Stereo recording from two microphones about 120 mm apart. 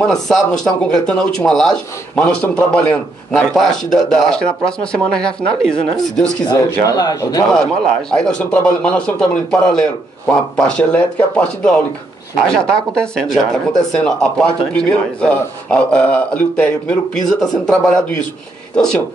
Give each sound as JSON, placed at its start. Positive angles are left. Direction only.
{"t": 0.0, "sound": "speech", "side_deg": 5}
{"t": 6.4, "sound": "speech", "side_deg": 35}
{"t": 7.5, "sound": "speech", "side_deg": 5}
{"t": 18.8, "sound": "speech", "side_deg": 5}